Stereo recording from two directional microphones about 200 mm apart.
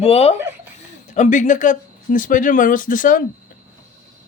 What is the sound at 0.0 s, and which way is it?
Speech, 30° left (ahead or behind).